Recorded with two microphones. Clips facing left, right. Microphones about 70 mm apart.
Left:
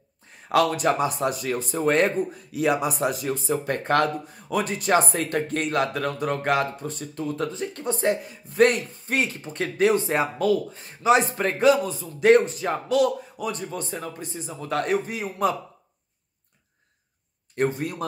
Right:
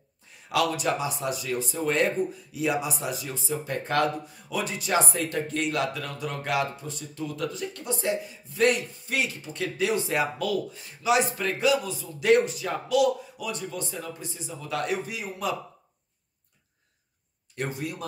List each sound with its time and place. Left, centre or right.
0.5 s speech: left
17.6 s speech: left